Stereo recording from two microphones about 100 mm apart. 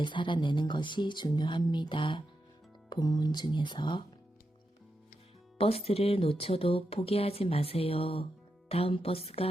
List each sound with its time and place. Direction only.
0.0 s speech: 55° left (ahead or behind)
2.9 s speech: 40° left (ahead or behind)
5.5 s speech: 75° left (ahead or behind)